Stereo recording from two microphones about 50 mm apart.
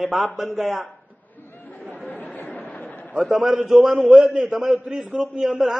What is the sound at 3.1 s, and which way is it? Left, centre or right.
A man's voice, centre.